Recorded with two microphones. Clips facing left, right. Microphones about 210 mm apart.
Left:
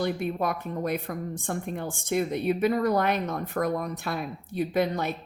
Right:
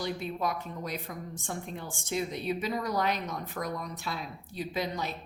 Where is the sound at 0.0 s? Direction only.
55° left (ahead or behind).